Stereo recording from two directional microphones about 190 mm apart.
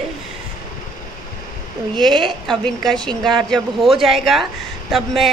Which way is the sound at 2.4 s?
Centre (ahead or behind).